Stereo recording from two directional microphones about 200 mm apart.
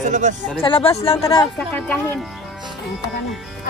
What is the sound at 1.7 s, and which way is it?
Speech, 5° left (ahead or behind).